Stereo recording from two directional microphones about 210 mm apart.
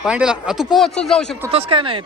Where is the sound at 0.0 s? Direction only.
5° right (ahead or behind).